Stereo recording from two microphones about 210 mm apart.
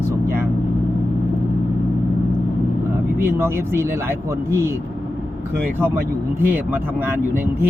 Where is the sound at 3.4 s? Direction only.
10° right (ahead or behind).